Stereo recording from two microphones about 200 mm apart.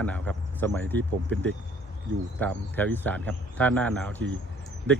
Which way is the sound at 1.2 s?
70° right (ahead or behind).